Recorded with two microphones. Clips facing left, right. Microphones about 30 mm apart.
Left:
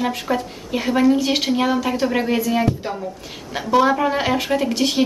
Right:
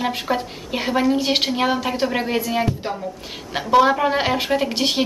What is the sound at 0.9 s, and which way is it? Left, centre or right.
Speech, centre.